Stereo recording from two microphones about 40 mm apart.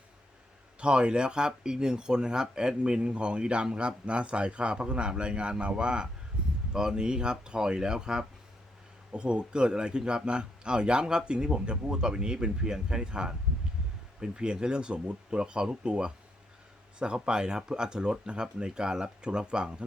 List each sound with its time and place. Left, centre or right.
0.8 s speech: right
17.2 s speech: right